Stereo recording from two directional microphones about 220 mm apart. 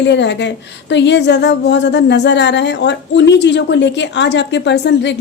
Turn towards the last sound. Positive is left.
turn(degrees=55)  # may be behind; listen again after turning